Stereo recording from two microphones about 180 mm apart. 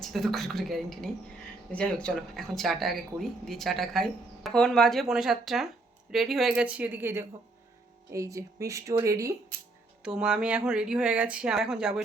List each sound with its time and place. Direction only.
0.0 s speech: centre (ahead or behind); by 9.3 s 15° right (ahead or behind)
10.0 s speech: 5° right (ahead or behind)